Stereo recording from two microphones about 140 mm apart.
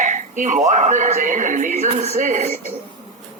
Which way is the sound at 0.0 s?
60° right (ahead or behind).